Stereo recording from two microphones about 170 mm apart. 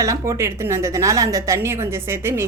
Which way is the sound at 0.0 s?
15° right (ahead or behind).